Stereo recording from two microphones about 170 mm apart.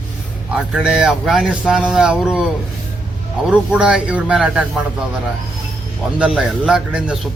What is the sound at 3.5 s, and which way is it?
Speech, 5° right (ahead or behind).